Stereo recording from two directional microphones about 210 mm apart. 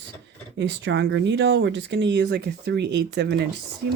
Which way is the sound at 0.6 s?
60° right (ahead or behind).